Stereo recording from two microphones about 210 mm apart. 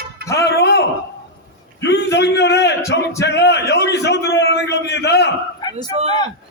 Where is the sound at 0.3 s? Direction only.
50° left (ahead or behind).